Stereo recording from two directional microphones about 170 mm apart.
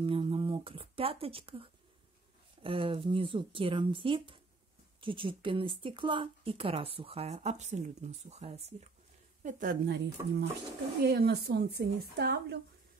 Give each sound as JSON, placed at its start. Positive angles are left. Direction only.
{"t": 0.0, "sound": "a woman's voice", "side_deg": -30}
{"t": 9.4, "sound": "a woman's voice", "side_deg": -50}
{"t": 9.8, "sound": "speech", "side_deg": -80}